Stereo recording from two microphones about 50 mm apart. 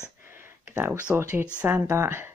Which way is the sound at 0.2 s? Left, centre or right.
Right.